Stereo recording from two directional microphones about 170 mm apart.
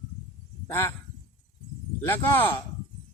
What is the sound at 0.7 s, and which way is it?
Speech, 15° left (ahead or behind).